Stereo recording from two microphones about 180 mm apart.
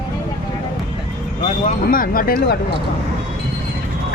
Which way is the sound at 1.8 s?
50° left (ahead or behind).